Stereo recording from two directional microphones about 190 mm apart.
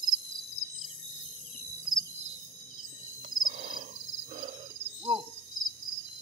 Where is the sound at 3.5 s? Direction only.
35° right (ahead or behind).